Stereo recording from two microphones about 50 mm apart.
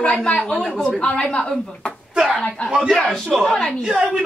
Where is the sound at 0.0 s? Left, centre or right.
Left.